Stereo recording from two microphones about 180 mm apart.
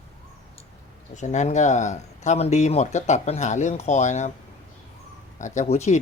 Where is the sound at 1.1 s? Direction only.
40° left (ahead or behind).